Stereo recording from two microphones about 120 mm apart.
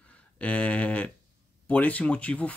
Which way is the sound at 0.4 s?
10° left (ahead or behind).